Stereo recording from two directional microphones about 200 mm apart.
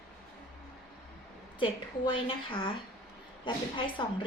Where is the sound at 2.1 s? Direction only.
25° left (ahead or behind).